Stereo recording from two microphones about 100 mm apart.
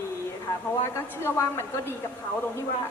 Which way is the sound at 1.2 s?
25° left (ahead or behind).